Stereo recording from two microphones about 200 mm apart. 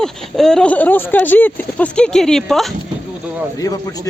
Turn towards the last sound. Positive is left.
turn(degrees=20)  # may be behind; listen again after turning